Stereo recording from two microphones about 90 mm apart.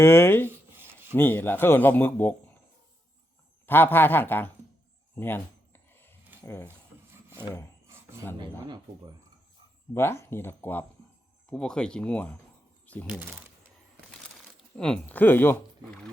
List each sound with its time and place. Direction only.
0.0 s a man's voice: 25° left (ahead or behind)
0.8 s filing: 25° right (ahead or behind)
1.1 s a man's voice: 25° left (ahead or behind)
3.7 s a man's voice: 25° left (ahead or behind)
5.1 s a sound: 20° left (ahead or behind)
6.4 s speech: 25° left (ahead or behind)
7.1 s rub: 25° right (ahead or behind)
8.4 s speech: 55° right (ahead or behind)
9.9 s a man's voice: 25° left (ahead or behind)
11.4 s speech: 10° left (ahead or behind)
12.8 s a sound: 15° left (ahead or behind)
14.8 s speech: 5° left (ahead or behind)
15.0 s a man's voice: 20° left (ahead or behind)